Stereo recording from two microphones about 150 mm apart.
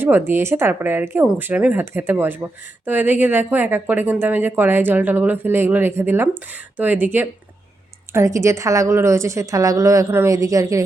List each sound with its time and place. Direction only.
0.0 s a woman's voice: 15° right (ahead or behind)